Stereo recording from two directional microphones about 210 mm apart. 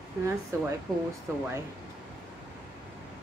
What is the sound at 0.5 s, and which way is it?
Speech, 15° right (ahead or behind).